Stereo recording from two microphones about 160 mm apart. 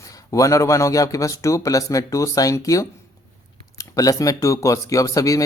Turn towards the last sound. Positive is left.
turn(degrees=20)  # may be behind; listen again after turning